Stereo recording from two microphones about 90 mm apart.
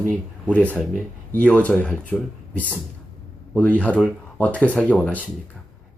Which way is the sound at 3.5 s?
15° left (ahead or behind).